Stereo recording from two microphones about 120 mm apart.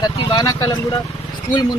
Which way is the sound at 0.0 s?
35° left (ahead or behind).